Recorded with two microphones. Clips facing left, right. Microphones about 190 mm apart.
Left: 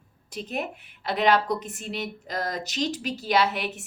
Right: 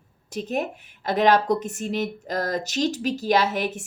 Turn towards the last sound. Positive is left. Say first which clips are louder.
# right 3 dB
turn(degrees=-45)  # may be behind; listen again after turning